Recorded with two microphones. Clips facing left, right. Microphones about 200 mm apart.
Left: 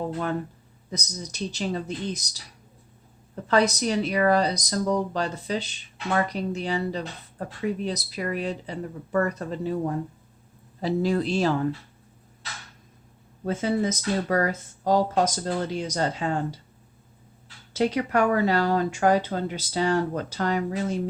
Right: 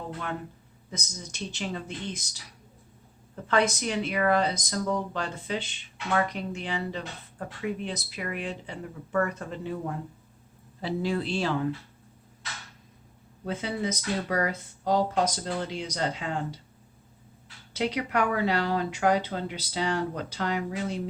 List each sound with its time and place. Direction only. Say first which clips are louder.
0.9 s speech: left 5 dB; 35° left (ahead or behind)
3.4 s speech: left 3 dB; 40° left (ahead or behind)
13.4 s speech: left 6 dB; 45° left (ahead or behind)
17.7 s speech: left 5 dB; 45° left (ahead or behind)